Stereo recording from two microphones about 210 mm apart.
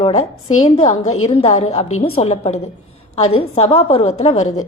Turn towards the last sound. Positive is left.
turn(degrees=30)  # may be behind; listen again after turning